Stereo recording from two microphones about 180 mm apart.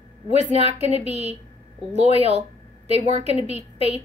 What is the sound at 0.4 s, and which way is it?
A woman's voice, 35° right (ahead or behind).